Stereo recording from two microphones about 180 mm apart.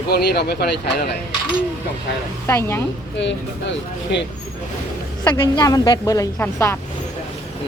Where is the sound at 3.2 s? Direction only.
85° left.